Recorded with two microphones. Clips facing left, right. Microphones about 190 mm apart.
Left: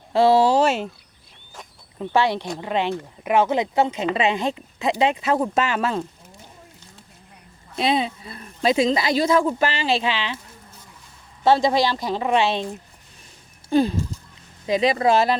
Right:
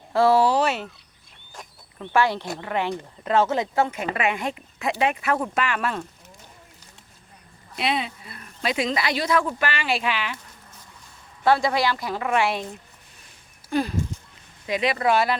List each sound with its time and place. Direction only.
0.1 s speech: 20° left (ahead or behind)
0.5 s speech: 45° left (ahead or behind)
2.0 s speech: 15° left (ahead or behind)
7.8 s speech: 30° left (ahead or behind)
11.4 s speech: 25° left (ahead or behind)
13.7 s speech: 30° left (ahead or behind)